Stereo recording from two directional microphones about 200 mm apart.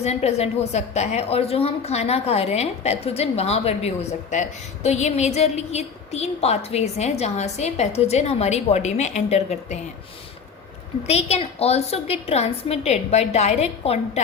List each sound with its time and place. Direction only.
0.0 s a woman's voice: 35° left (ahead or behind)
11.0 s a woman's voice: 30° left (ahead or behind)